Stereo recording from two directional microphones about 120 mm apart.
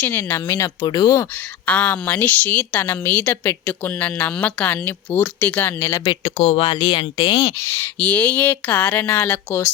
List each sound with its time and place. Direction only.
0.0 s speech: 15° left (ahead or behind)
1.6 s a woman's voice: 10° left (ahead or behind)
6.1 s speech: 55° left (ahead or behind)
7.6 s a woman's voice: 20° left (ahead or behind)